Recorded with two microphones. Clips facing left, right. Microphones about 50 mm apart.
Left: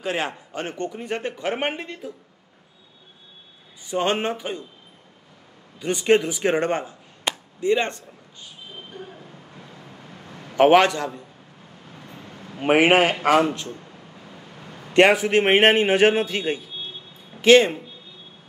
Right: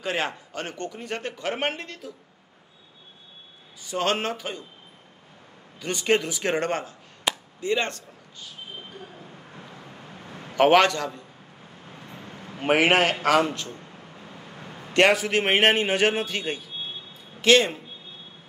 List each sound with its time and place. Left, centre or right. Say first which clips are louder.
0.0 s speech: left 1 dB; centre
0.5 s a man's voice: left 4 dB; centre
3.8 s speech: left 3 dB; centre
5.8 s speech: left 5 dB; centre
7.3 s chop: even; centre
7.6 s speech: left 4 dB; centre
8.9 s vehicle: left 4 dB; left
9.5 s vehicle: even; right
10.5 s a man's voice: left 3 dB; centre
11.9 s vehicle: even; right
12.7 s speech: left 3 dB; centre
13.7 s air conditioning: left 1 dB; right
14.5 s a sound: right 1 dB; right
15.0 s a man's voice: left 4 dB; centre